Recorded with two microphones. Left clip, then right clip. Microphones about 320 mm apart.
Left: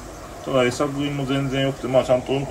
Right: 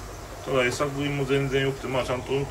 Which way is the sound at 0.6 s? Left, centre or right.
Centre.